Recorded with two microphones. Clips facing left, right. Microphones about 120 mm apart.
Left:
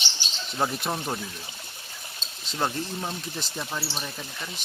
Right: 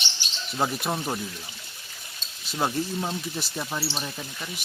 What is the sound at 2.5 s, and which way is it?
Speech, 5° right (ahead or behind).